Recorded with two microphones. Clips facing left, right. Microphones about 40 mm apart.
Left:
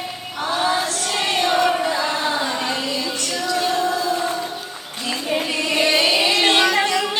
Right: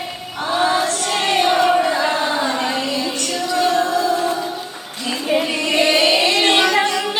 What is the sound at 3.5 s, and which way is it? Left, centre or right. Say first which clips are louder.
Music: right 4 dB; centre.